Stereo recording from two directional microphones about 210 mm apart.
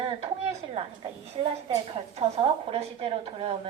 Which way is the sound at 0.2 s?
30° right (ahead or behind).